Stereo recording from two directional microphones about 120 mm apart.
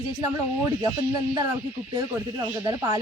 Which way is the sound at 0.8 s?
35° right (ahead or behind).